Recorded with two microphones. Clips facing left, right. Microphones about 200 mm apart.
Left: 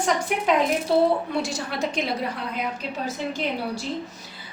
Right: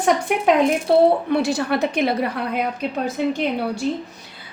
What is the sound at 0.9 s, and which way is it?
A woman's voice, 60° right (ahead or behind).